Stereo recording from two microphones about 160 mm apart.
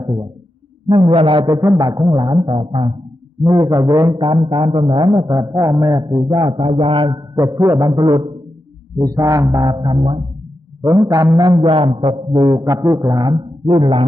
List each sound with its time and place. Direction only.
0.0 s a man's voice: 25° right (ahead or behind)
3.4 s a man's voice: 20° right (ahead or behind)
10.8 s a man's voice: 20° right (ahead or behind)